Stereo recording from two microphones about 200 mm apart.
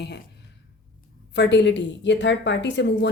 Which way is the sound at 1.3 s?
60° left (ahead or behind).